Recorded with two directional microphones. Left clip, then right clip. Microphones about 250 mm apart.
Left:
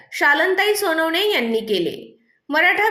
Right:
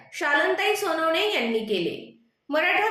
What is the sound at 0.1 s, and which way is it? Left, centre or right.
A woman's voice, left.